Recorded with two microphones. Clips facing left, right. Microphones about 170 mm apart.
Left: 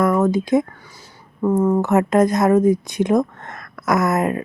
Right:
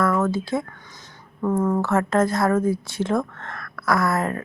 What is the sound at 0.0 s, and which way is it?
Speech, 15° left (ahead or behind).